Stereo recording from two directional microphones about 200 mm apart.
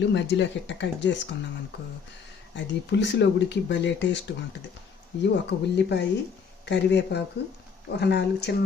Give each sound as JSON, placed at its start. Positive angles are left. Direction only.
{"t": 0.1, "sound": "speech", "side_deg": 60}
{"t": 2.6, "sound": "speech", "side_deg": 60}
{"t": 5.2, "sound": "speech", "side_deg": 60}